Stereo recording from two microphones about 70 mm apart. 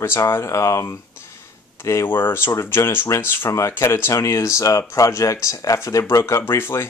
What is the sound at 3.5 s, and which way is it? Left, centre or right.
Speech, left.